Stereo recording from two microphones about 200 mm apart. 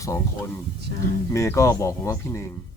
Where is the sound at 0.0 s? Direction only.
15° left (ahead or behind).